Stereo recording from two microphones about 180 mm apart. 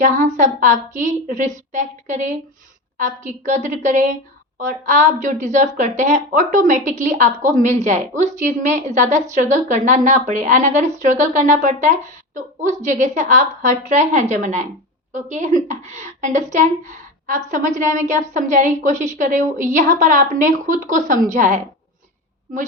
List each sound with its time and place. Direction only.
0.0 s a woman's voice: 45° right (ahead or behind)